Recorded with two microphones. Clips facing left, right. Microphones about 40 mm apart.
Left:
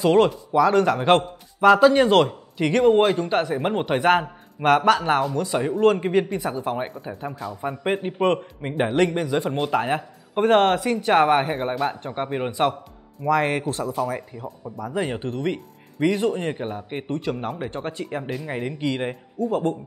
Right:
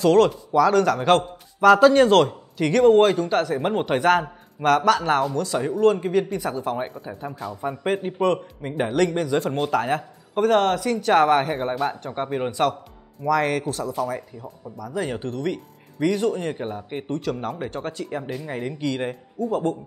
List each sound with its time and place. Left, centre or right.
0.0 s speech: centre
6.5 s speech: centre
7.8 s speech: centre
8.3 s speech: left
9.1 s speech: centre
10.5 s speech: left
14.1 s speech: left
15.0 s speech: centre